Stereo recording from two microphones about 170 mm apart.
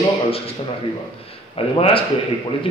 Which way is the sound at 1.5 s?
35° left (ahead or behind).